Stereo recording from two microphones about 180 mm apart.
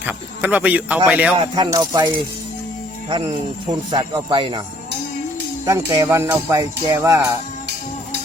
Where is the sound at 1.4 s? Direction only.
25° right (ahead or behind).